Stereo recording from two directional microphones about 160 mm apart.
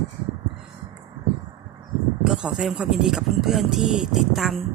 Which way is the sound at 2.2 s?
5° right (ahead or behind).